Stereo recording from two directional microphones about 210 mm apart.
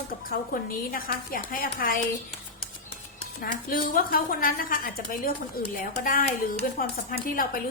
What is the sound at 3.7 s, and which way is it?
A woman's voice, 40° left (ahead or behind).